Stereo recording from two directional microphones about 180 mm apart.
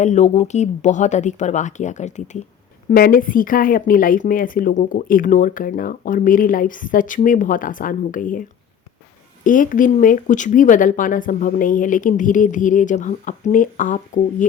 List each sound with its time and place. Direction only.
0.0 s speech: 40° left (ahead or behind)
2.9 s speech: 55° left (ahead or behind)